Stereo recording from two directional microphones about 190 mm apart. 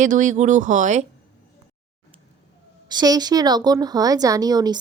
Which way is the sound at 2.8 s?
20° right (ahead or behind).